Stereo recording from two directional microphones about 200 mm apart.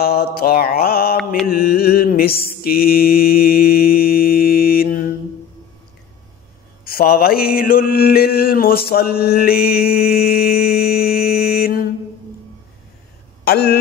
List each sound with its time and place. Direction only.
0.0 s mantra: 50° left (ahead or behind)
1.1 s mantra: centre (ahead or behind)
1.5 s mantra: 50° left (ahead or behind)
6.8 s mantra: 50° left (ahead or behind)
13.4 s speech: 50° left (ahead or behind)